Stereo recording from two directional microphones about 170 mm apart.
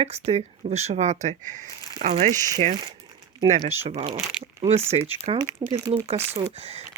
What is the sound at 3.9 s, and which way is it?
Speech, 35° right (ahead or behind).